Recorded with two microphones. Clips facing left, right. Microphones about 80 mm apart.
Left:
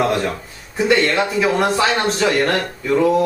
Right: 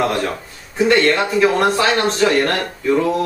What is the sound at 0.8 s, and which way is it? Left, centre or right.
A man's voice, centre.